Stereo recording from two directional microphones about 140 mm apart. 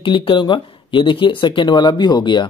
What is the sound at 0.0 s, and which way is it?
Speech, 35° left (ahead or behind).